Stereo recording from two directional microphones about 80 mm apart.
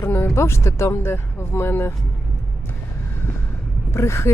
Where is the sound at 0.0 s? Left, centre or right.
Left.